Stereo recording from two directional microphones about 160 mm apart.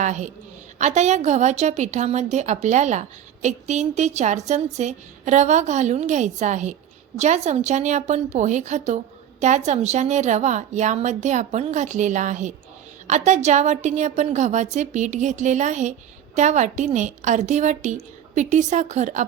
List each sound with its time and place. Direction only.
0.0 s a woman's voice: 50° right (ahead or behind)